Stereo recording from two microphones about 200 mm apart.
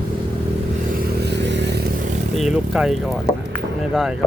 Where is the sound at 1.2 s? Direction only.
60° right (ahead or behind).